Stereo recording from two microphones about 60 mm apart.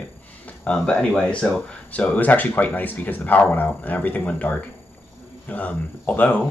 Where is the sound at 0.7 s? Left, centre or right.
Centre.